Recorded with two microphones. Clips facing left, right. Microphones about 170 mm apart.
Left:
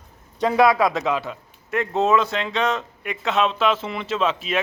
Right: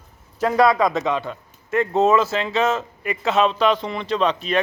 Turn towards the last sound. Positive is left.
turn(degrees=5)  # may be behind; listen again after turning